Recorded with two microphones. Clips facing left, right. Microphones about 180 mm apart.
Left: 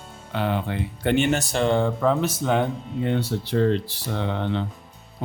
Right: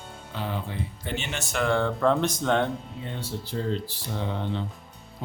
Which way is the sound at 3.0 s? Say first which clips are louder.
Left 10 dB; 70° left (ahead or behind).